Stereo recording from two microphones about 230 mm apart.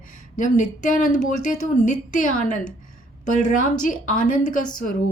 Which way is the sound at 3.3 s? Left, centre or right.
Left.